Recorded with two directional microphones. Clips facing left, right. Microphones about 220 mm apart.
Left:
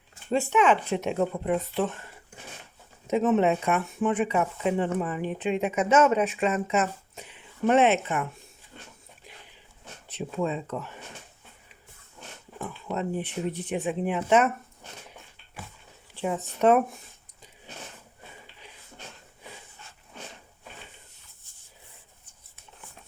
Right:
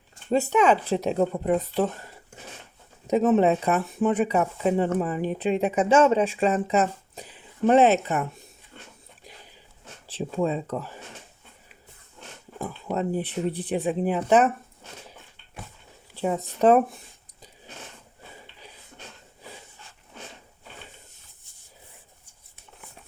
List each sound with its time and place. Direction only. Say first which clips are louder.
0.3 s speech: right 2 dB; 40° right (ahead or behind)
3.1 s speech: right 3 dB; 35° right (ahead or behind)
10.1 s speech: right 3 dB; 30° right (ahead or behind)
12.5 s speech: right 3 dB; 35° right (ahead or behind)
16.1 s speech: right 3 dB; 40° right (ahead or behind)